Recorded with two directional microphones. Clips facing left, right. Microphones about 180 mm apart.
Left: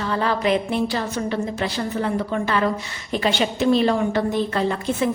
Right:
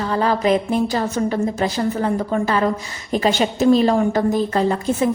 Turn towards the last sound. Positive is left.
turn(degrees=-35)  # may be behind; listen again after turning